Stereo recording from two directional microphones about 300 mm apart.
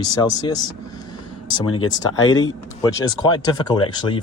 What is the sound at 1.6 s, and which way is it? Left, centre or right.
Speech, left.